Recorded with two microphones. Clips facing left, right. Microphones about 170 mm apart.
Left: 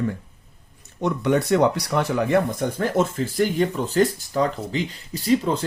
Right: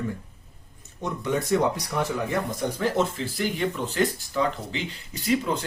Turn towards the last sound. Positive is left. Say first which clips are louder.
# left 4 dB
turn(degrees=35)  # may be behind; listen again after turning